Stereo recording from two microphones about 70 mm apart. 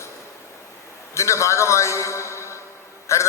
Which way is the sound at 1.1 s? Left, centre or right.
Left.